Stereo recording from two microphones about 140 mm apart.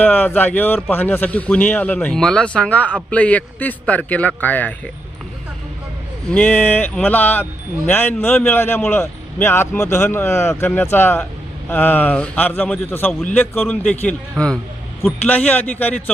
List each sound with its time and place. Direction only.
0.0 s a man's voice: 15° left (ahead or behind)
6.2 s a man's voice: 10° left (ahead or behind)